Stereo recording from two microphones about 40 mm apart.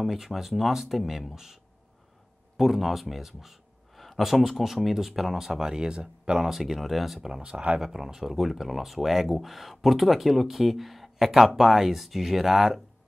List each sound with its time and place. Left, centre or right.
0.0 s a man's voice: centre
6.5 s speech: centre
7.2 s speech: centre
7.8 s speech: centre